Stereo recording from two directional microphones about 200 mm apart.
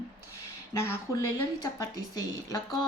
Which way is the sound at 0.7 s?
15° left (ahead or behind).